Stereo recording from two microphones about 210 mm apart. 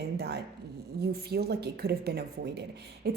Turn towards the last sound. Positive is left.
turn(degrees=-50)  # may be behind; listen again after turning